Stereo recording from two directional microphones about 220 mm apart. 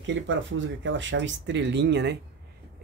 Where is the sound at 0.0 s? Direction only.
60° right (ahead or behind).